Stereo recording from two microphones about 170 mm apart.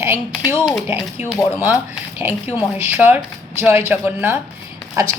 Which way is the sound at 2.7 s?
10° right (ahead or behind).